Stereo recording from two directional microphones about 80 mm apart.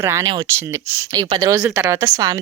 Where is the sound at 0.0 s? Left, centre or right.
Right.